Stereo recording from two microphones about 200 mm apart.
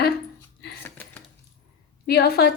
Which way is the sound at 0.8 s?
10° left (ahead or behind).